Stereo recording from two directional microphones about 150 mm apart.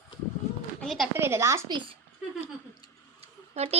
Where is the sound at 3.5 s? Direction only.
45° right (ahead or behind).